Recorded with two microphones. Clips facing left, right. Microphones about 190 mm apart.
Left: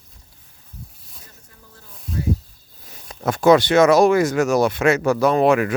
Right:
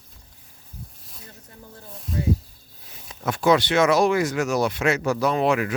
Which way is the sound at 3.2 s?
45° left (ahead or behind).